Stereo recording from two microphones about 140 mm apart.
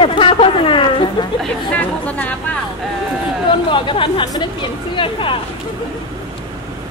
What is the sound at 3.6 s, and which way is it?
Speech, 35° left (ahead or behind).